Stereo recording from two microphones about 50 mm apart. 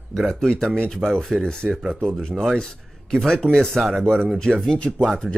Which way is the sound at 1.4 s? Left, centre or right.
Centre.